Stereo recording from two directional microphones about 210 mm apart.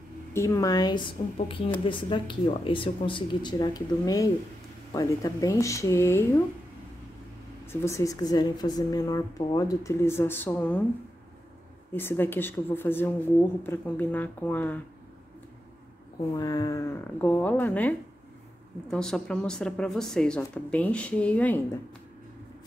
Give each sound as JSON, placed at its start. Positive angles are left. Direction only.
{"t": 0.3, "sound": "a woman's voice", "side_deg": 15}
{"t": 7.6, "sound": "a woman's voice", "side_deg": 10}
{"t": 11.9, "sound": "a woman's voice", "side_deg": 10}
{"t": 16.3, "sound": "a woman's voice", "side_deg": 15}